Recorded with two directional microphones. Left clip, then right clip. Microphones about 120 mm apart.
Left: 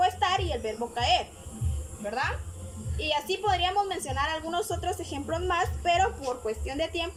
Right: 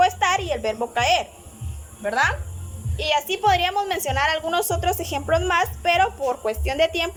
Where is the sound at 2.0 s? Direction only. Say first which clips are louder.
Right 10 dB; 10° left (ahead or behind).